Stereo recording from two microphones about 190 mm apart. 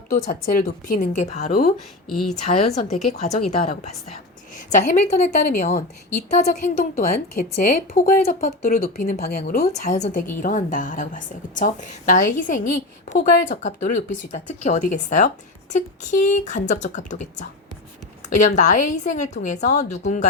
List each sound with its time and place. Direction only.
0.3 s a woman's voice: 45° left (ahead or behind)
2.0 s a woman's voice: centre (ahead or behind)
2.4 s a woman's voice: 35° left (ahead or behind)
6.1 s a woman's voice: 55° left (ahead or behind)
18.4 s a woman's voice: 40° left (ahead or behind)